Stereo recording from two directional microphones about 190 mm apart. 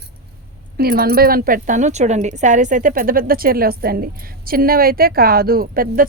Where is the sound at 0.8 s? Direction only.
50° right (ahead or behind).